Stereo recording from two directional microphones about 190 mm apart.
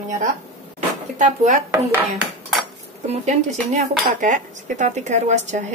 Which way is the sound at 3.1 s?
35° right (ahead or behind).